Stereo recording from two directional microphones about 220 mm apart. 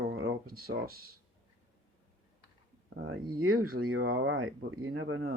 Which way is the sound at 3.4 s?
75° right (ahead or behind).